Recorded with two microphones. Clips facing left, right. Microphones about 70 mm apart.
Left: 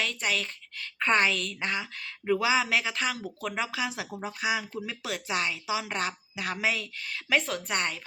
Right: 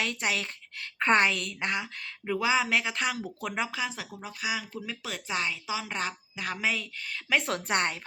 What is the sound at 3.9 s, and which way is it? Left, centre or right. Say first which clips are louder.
Speech: left 4 dB; centre.